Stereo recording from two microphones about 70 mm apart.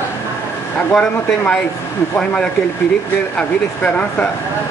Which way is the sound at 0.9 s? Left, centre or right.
Centre.